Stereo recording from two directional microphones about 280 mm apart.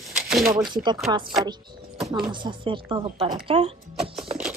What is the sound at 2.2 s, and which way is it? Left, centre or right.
Speech, centre.